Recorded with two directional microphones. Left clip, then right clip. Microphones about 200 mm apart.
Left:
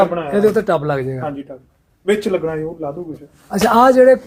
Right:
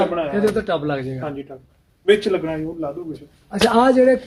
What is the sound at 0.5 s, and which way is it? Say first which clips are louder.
Speech: left 5 dB; 70° left (ahead or behind).